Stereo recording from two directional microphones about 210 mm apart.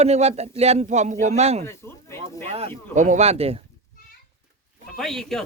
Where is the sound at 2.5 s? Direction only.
30° right (ahead or behind).